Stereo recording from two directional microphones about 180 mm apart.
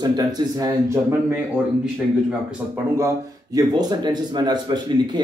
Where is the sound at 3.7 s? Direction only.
25° right (ahead or behind).